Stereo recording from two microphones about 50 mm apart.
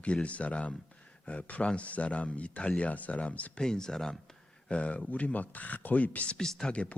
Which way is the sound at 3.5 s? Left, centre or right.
Centre.